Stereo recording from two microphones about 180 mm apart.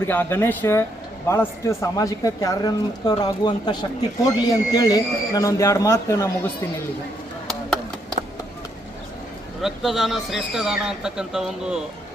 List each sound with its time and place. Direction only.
0.1 s a man's voice: 10° left (ahead or behind)
9.6 s speech: centre (ahead or behind)